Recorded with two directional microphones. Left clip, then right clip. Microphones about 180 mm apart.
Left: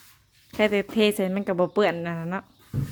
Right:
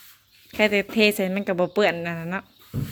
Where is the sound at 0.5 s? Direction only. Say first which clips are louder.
Right 2 dB; 20° left (ahead or behind).